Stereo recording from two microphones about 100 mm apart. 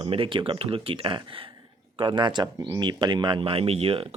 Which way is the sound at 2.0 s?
50° right (ahead or behind).